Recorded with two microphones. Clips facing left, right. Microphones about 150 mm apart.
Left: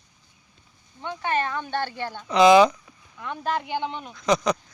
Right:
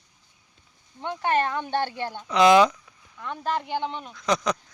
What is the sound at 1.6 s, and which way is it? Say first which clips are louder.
Speech: right 2 dB; 25° right (ahead or behind).